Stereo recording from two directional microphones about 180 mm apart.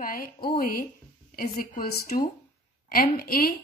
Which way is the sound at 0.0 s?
50° left (ahead or behind).